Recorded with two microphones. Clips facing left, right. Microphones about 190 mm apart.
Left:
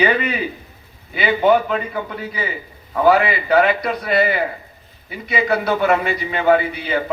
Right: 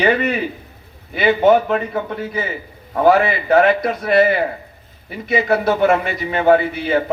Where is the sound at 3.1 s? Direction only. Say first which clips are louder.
Right 1 dB; 45° right (ahead or behind).